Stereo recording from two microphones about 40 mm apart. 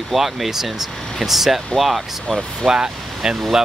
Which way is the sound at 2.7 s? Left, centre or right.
Centre.